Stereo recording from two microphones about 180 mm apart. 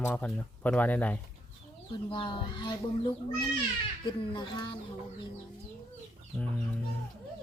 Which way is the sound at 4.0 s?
25° left (ahead or behind).